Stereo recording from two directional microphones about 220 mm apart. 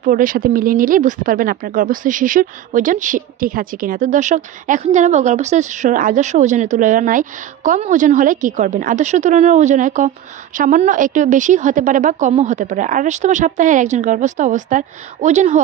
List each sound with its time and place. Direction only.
0.0 s speech: 40° right (ahead or behind)